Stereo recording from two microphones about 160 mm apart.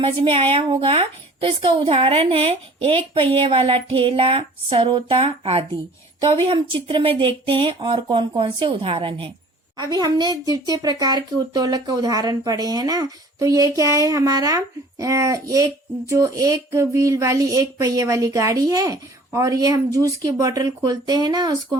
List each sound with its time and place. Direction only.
0.0 s a woman's voice: 35° right (ahead or behind)